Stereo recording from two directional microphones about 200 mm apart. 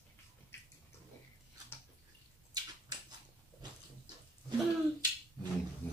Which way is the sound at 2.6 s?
20° right (ahead or behind).